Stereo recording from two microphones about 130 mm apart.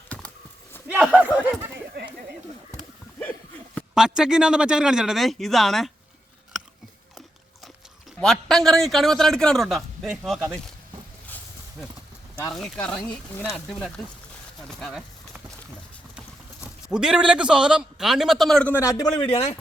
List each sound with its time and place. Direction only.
0.9 s a man's voice: 5° right (ahead or behind)
1.2 s a sound: 15° right (ahead or behind)
3.9 s a man's voice: 5° right (ahead or behind)
8.2 s a man's voice: 5° left (ahead or behind)
12.5 s a man's voice: 5° left (ahead or behind)
16.6 s a man's voice: 5° right (ahead or behind)
18.7 s a man's voice: 20° left (ahead or behind)
19.2 s speech: 45° left (ahead or behind)